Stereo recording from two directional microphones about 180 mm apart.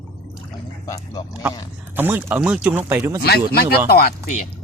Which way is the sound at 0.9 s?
20° left (ahead or behind).